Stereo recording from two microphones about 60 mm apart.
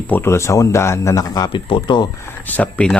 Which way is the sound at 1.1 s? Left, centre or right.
Left.